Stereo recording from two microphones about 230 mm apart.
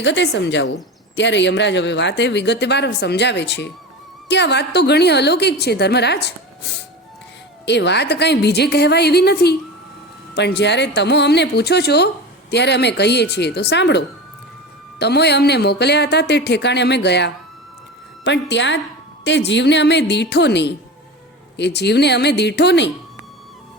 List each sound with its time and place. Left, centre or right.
0.0 s speech: left